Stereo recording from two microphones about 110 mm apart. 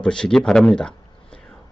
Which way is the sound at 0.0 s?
5° left (ahead or behind).